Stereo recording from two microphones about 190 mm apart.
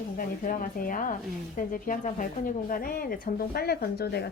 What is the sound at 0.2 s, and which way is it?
A woman's voice, 50° left (ahead or behind).